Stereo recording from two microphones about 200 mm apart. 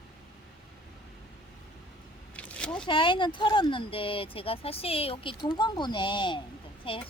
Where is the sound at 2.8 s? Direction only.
25° left (ahead or behind).